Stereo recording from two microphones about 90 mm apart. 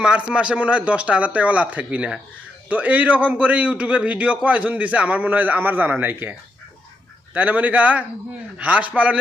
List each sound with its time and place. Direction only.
0.0 s a man's voice: 10° right (ahead or behind)
7.3 s a man's voice: 15° right (ahead or behind)